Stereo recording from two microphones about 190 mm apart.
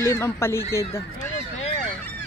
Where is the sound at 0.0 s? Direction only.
15° left (ahead or behind).